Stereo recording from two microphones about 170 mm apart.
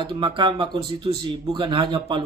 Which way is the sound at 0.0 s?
30° right (ahead or behind).